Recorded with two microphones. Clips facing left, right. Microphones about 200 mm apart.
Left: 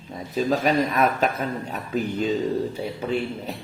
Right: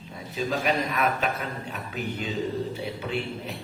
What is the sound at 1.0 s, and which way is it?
Speech, 40° left (ahead or behind).